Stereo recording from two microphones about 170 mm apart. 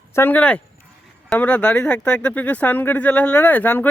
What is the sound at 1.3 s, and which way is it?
Speech, 10° left (ahead or behind).